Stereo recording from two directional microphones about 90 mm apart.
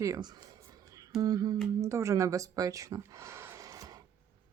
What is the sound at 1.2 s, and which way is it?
Speech, 45° right (ahead or behind).